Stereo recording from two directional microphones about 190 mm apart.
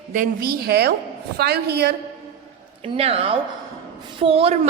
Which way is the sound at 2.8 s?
30° right (ahead or behind).